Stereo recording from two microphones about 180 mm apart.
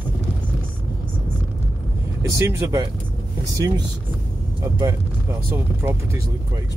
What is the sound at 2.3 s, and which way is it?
Speech, 20° right (ahead or behind).